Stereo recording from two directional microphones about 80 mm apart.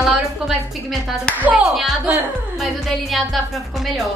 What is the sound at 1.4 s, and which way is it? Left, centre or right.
Speech, centre.